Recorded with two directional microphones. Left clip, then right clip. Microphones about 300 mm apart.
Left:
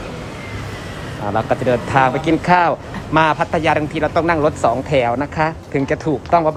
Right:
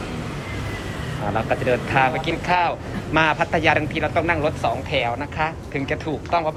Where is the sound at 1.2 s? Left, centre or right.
Centre.